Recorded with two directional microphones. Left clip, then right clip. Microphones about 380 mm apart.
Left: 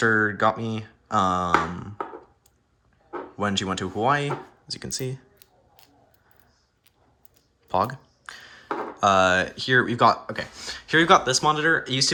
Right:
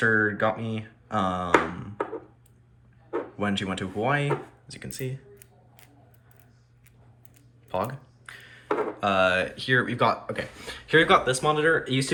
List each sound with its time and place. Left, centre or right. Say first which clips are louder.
0.0 s a sound: left 2 dB; centre
0.6 s speech: left 3 dB; centre
3.3 s speech: left 6 dB; centre
7.7 s speech: left 5 dB; centre